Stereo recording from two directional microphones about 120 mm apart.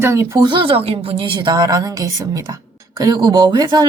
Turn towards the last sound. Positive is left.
turn(degrees=-35)  # may be behind; listen again after turning